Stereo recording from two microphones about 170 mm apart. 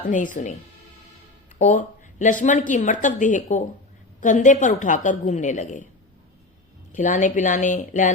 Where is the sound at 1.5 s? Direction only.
45° left (ahead or behind).